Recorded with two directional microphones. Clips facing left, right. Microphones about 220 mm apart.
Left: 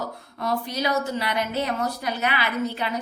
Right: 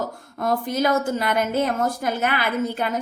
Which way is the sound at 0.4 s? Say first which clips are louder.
Right 4 dB; 50° right (ahead or behind).